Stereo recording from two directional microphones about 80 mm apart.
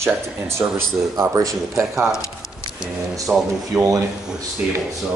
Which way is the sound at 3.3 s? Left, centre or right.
Centre.